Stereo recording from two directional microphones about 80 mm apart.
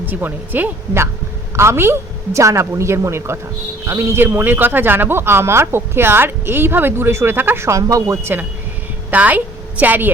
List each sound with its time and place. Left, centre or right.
0.0 s a woman's voice: right